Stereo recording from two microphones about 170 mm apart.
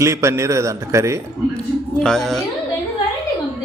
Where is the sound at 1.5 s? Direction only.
5° left (ahead or behind).